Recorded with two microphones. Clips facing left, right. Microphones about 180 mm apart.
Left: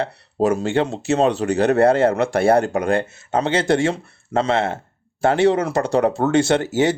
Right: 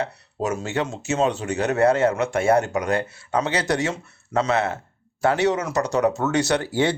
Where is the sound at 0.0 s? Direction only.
35° left (ahead or behind).